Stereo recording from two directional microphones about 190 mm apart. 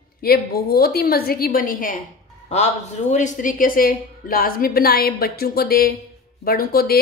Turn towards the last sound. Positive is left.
turn(degrees=55)  # may be behind; listen again after turning